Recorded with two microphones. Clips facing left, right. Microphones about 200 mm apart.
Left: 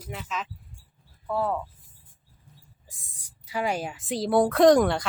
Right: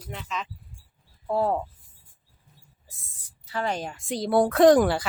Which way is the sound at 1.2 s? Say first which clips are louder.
Right 3 dB; 30° right (ahead or behind).